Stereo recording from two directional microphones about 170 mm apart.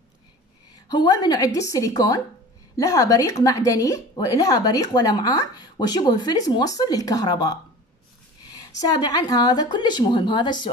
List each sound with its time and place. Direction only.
0.8 s a woman's voice: 25° left (ahead or behind)
8.8 s a woman's voice: 25° left (ahead or behind)